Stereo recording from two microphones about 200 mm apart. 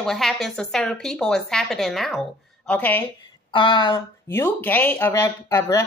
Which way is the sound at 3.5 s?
25° left (ahead or behind).